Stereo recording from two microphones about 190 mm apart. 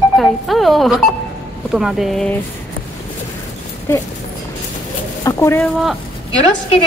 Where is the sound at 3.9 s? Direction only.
15° left (ahead or behind).